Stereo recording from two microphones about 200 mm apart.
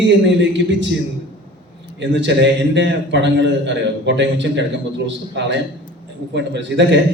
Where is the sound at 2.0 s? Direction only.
65° right (ahead or behind).